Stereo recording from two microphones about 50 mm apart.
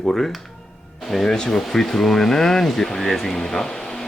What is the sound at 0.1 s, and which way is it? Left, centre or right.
Speech, centre.